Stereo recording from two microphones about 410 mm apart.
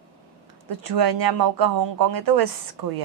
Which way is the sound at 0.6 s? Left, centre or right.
Right.